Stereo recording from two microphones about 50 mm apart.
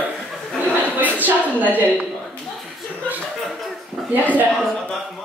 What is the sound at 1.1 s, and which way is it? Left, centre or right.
Speech, right.